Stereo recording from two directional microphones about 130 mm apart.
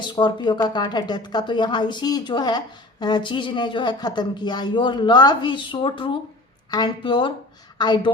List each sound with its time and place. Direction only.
0.0 s a woman's voice: 35° left (ahead or behind)